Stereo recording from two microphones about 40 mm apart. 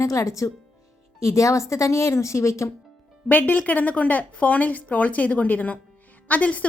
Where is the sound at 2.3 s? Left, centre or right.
Left.